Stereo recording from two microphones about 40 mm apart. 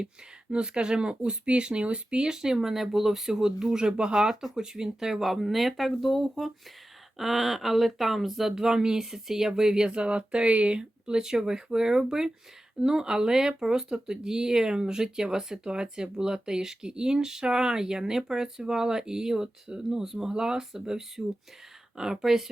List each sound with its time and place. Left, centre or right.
0.5 s speech: right
2.2 s speech: centre
9.9 s speech: right; by 22.4 s centre